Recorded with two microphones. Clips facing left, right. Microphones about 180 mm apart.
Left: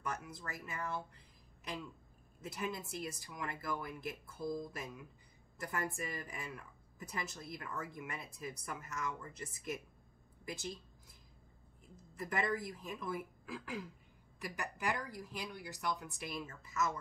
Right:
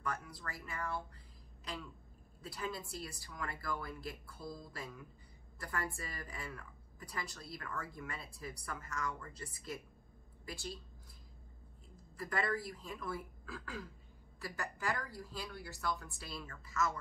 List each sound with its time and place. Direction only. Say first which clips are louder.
0.0 s a woman's voice: even; 20° left (ahead or behind)
2.4 s a woman's voice: left 1 dB; 20° left (ahead or behind)
12.0 s a woman's voice: left 1 dB; 20° left (ahead or behind)